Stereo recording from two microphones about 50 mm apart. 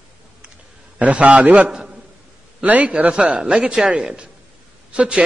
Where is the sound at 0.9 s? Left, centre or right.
Right.